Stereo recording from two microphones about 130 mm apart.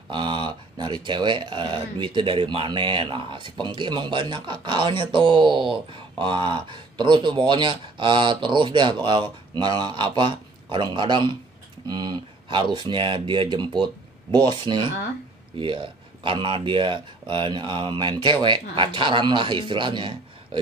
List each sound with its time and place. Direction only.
0.1 s speech: 35° right (ahead or behind)